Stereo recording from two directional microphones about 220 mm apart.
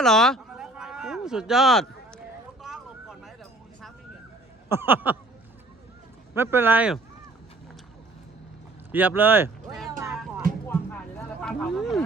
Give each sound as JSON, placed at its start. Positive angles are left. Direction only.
{"t": 0.0, "sound": "a sound", "side_deg": 0}
{"t": 2.6, "sound": "vehicle", "side_deg": 0}
{"t": 4.7, "sound": "speech", "side_deg": -10}
{"t": 6.3, "sound": "speech", "side_deg": -10}
{"t": 8.9, "sound": "speech", "side_deg": -10}
{"t": 10.4, "sound": "music", "side_deg": -40}
{"t": 11.4, "sound": "a sound", "side_deg": 0}